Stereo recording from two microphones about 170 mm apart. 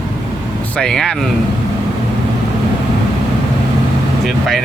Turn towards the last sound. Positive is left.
turn(degrees=0)  # may be behind; listen again after turning